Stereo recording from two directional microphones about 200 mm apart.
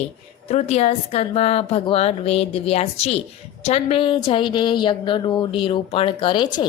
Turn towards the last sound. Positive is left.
turn(degrees=25)  # may be behind; listen again after turning